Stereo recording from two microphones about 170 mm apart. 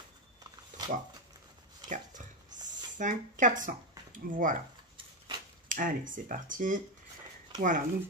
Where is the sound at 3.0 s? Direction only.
50° right (ahead or behind).